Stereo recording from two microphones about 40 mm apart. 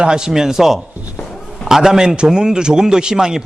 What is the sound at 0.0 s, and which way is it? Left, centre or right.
A man's voice, centre.